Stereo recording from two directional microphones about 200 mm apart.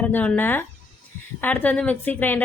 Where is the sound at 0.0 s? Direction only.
10° left (ahead or behind).